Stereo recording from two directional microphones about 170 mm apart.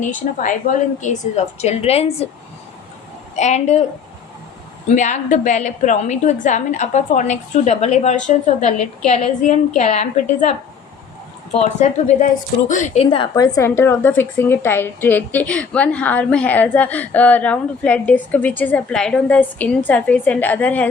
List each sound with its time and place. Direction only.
0.0 s a woman's voice: 50° left (ahead or behind)
1.5 s a woman's voice: 40° left (ahead or behind)
3.3 s a woman's voice: 40° left (ahead or behind)
4.9 s a woman's voice: 45° left (ahead or behind)
11.5 s a woman's voice: 45° left (ahead or behind)
13.3 s a woman's voice: 20° left (ahead or behind)